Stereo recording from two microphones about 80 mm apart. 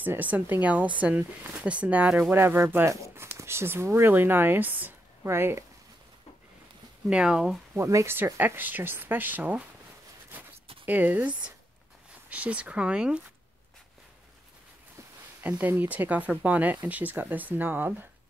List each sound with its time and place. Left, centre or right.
0.0 s speech: right
2.3 s speech: right
7.1 s speech: centre
7.7 s speech: right
8.4 s speech: right
10.9 s speech: right
15.4 s speech: centre